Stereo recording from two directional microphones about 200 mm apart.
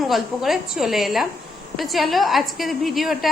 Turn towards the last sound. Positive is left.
turn(degrees=0)  # may be behind; listen again after turning